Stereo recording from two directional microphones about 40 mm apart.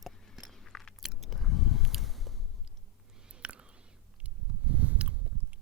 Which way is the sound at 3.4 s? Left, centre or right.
Right.